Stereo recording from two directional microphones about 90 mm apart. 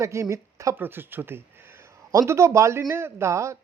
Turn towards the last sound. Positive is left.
turn(degrees=-35)  # may be behind; listen again after turning